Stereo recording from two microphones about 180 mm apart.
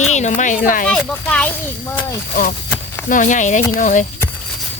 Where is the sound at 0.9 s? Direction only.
5° left (ahead or behind).